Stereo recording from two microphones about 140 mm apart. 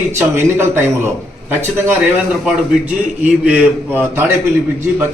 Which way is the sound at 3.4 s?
10° right (ahead or behind).